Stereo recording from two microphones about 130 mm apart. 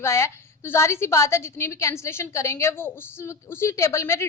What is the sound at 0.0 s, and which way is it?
A woman's voice, 20° left (ahead or behind).